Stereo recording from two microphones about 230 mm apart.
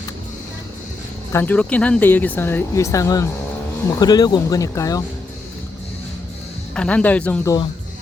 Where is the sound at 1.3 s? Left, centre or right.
Centre.